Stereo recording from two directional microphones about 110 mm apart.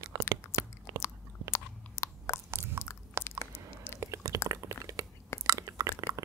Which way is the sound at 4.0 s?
30° right (ahead or behind).